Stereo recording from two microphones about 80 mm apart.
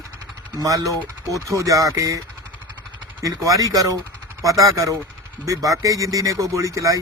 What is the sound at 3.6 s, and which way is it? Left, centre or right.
Speech, right.